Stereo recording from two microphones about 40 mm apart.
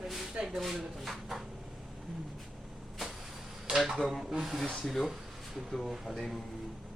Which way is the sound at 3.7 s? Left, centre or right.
Centre.